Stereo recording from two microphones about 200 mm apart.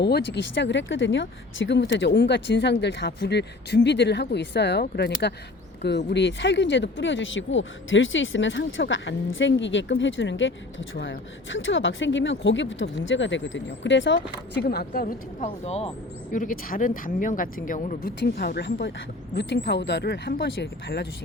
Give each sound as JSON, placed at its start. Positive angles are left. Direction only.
{"t": 0.0, "sound": "speech", "side_deg": 60}
{"t": 15.6, "sound": "speech", "side_deg": 30}
{"t": 16.3, "sound": "speech", "side_deg": 40}
{"t": 18.2, "sound": "speech", "side_deg": 55}